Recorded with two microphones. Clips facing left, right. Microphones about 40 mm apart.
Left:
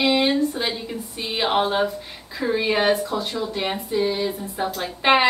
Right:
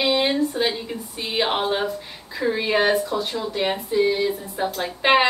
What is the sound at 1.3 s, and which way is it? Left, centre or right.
A woman's voice, centre.